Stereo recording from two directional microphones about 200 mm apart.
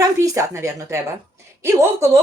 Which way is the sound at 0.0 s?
15° right (ahead or behind).